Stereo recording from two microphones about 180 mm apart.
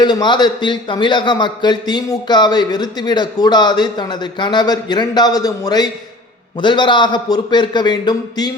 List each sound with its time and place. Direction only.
0.0 s a man's voice: 25° left (ahead or behind)